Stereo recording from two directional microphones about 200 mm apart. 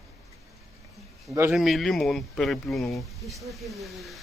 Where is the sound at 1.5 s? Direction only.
Centre (ahead or behind).